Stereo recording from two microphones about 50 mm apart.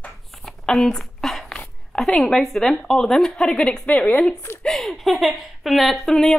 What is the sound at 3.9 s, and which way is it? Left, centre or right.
Speech, left.